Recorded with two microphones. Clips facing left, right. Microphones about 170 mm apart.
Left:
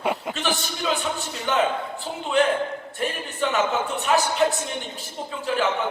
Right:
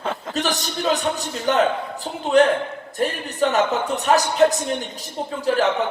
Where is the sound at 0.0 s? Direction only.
10° left (ahead or behind).